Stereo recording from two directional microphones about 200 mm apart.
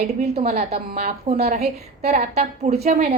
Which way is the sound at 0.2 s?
30° right (ahead or behind).